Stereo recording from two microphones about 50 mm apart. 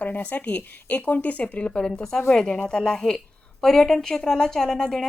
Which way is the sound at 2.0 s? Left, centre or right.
Centre.